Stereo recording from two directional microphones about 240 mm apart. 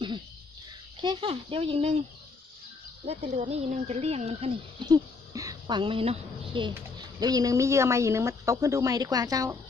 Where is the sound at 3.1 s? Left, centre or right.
Right.